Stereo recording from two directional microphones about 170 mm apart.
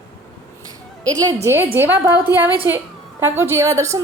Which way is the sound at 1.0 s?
20° right (ahead or behind).